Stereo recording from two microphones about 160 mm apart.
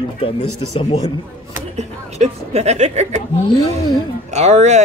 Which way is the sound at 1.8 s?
40° right (ahead or behind).